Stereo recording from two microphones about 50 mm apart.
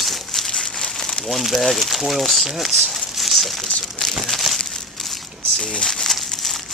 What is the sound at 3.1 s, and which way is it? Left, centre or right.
Crumpling, centre.